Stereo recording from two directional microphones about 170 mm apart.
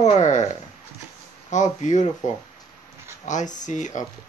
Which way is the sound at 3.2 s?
45° left (ahead or behind).